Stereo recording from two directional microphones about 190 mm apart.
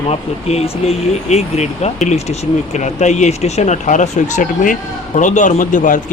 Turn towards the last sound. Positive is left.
turn(degrees=45)  # may be behind; listen again after turning